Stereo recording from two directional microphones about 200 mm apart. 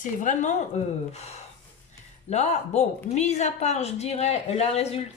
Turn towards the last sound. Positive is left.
turn(degrees=30)  # may be behind; listen again after turning